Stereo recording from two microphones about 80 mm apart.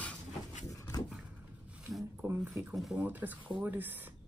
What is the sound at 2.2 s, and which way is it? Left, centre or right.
Speech, right.